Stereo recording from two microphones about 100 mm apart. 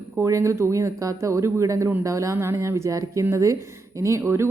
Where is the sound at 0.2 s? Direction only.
30° right (ahead or behind).